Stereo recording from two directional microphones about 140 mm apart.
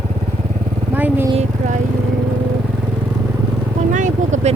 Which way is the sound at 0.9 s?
15° right (ahead or behind).